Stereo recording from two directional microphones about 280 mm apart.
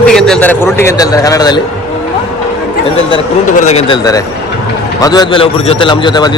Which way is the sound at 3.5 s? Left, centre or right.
Left.